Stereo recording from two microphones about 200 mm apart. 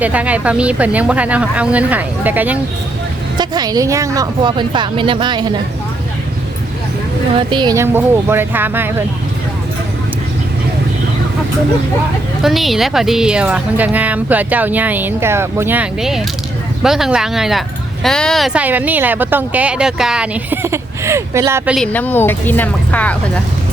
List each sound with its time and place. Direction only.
0.0 s a woman's voice: 5° right (ahead or behind)
3.3 s speech: 20° right (ahead or behind)
7.3 s a woman's voice: 20° right (ahead or behind)
12.4 s a woman's voice: centre (ahead or behind)
21.8 s speech: 10° left (ahead or behind)